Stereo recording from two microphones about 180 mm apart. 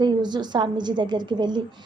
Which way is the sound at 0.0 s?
25° right (ahead or behind).